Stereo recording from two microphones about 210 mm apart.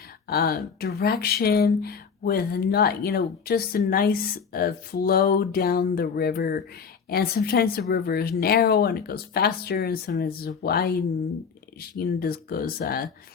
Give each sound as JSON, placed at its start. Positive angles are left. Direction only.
{"t": 0.3, "sound": "speech", "side_deg": 45}